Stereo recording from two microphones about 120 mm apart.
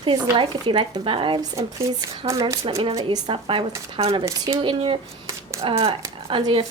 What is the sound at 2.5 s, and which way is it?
Speech, 25° right (ahead or behind).